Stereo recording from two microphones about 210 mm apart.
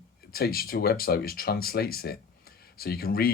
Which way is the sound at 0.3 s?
45° left (ahead or behind).